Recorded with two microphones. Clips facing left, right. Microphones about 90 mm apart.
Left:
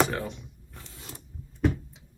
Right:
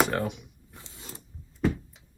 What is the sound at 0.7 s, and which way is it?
Mechanisms, 20° right (ahead or behind).